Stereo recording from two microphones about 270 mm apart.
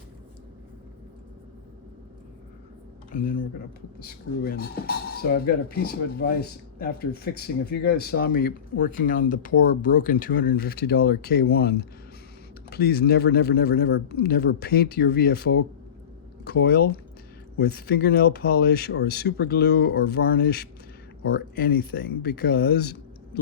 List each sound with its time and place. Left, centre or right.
3.1 s speech: left